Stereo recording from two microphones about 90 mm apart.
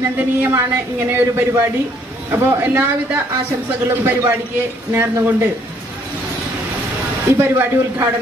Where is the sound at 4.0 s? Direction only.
25° right (ahead or behind).